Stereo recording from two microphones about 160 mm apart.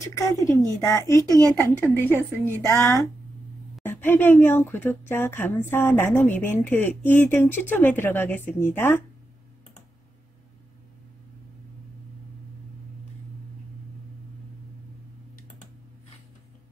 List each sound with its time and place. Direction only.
0.0 s speech: 20° left (ahead or behind)
1.5 s speech: 5° left (ahead or behind)